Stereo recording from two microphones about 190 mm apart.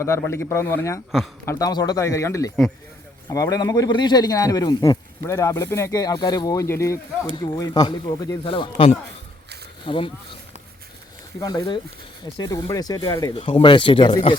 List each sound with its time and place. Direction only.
0.0 s speech: 15° left (ahead or behind)
11.3 s speech: 20° left (ahead or behind)
13.3 s speech: 30° left (ahead or behind)